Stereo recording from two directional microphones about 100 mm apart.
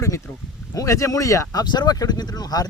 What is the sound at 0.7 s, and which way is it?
Speech, 35° left (ahead or behind).